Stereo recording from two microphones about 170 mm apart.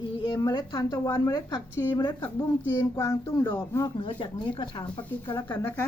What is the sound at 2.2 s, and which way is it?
Speech, 10° left (ahead or behind).